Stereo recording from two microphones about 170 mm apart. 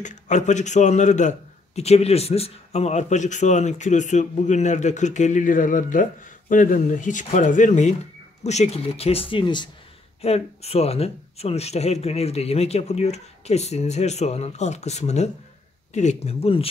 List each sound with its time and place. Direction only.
0.0 s a man's voice: 45° left (ahead or behind)